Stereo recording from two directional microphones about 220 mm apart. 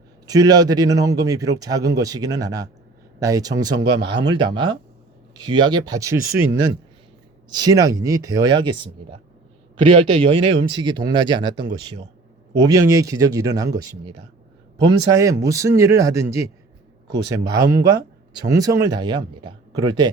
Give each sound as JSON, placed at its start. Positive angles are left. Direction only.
{"t": 0.3, "sound": "a man's voice", "side_deg": -15}
{"t": 7.5, "sound": "a man's voice", "side_deg": -15}